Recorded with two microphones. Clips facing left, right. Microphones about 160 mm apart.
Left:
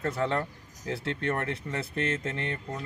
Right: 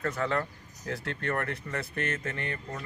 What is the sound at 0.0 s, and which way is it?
Speech, 30° left (ahead or behind).